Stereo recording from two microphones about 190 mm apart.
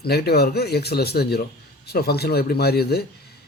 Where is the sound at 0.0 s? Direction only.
55° left (ahead or behind).